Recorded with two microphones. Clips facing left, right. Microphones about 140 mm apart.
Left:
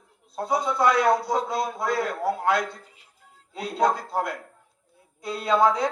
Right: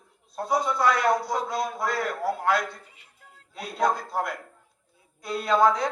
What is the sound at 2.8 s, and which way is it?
Music, centre (ahead or behind).